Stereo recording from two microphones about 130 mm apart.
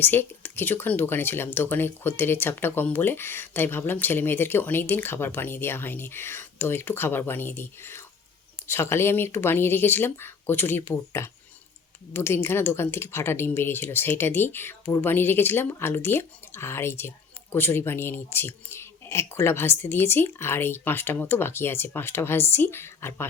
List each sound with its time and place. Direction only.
0.0 s speech: 15° left (ahead or behind)